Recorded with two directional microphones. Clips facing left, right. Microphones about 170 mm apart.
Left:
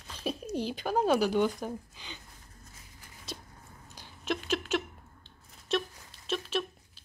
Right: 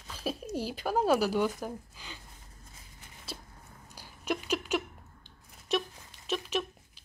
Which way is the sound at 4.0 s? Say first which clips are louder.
Even; 10° right (ahead or behind).